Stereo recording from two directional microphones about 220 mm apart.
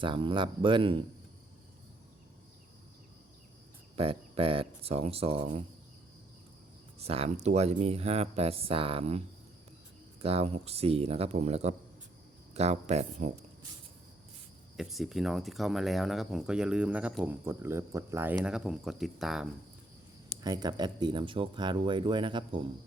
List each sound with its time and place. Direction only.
0.0 s speech: 20° right (ahead or behind)
3.9 s speech: 25° right (ahead or behind)
7.0 s speech: 25° right (ahead or behind)
14.8 s speech: centre (ahead or behind)
20.4 s speech: 20° right (ahead or behind)